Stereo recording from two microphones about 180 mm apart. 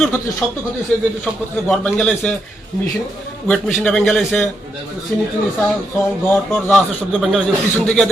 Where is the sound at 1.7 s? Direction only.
5° left (ahead or behind).